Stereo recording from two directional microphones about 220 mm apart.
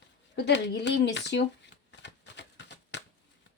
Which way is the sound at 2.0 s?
55° left (ahead or behind).